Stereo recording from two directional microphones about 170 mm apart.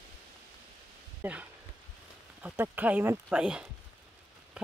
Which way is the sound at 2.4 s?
10° right (ahead or behind).